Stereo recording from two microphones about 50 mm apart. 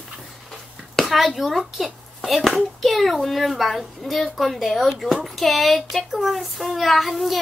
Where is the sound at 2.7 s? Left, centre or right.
Centre.